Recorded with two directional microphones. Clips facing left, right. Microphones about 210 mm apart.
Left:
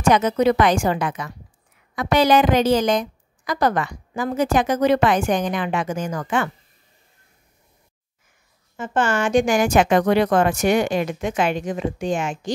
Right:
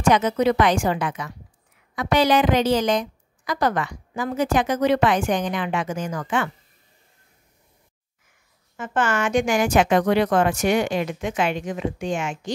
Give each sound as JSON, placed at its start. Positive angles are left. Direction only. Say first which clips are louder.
{"t": 0.1, "sound": "a woman's voice", "louder": "left 2 dB", "side_deg": 45}
{"t": 8.7, "sound": "a woman's voice", "louder": "left 2 dB", "side_deg": 30}